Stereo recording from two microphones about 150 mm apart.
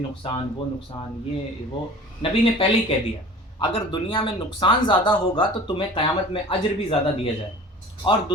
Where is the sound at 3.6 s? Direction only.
35° left (ahead or behind).